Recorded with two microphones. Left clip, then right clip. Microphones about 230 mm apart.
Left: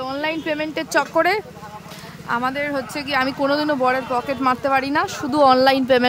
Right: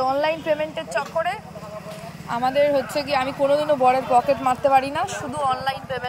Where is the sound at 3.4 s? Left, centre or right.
Left.